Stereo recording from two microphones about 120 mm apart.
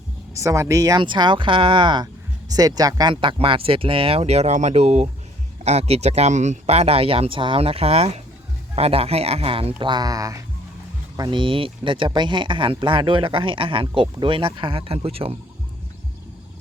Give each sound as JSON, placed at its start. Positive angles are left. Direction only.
{"t": 0.3, "sound": "speech", "side_deg": -25}
{"t": 2.5, "sound": "speech", "side_deg": -30}
{"t": 11.2, "sound": "speech", "side_deg": -45}